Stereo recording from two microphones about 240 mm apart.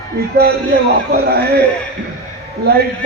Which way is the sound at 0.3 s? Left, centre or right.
Right.